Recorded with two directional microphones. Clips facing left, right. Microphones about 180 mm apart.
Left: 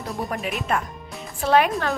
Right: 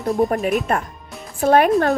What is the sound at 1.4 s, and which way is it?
Speech, 45° right (ahead or behind).